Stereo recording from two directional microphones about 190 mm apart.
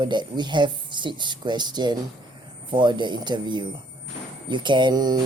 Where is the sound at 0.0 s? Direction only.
25° right (ahead or behind).